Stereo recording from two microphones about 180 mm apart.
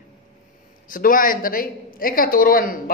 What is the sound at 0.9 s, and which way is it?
A woman's voice, 50° left (ahead or behind).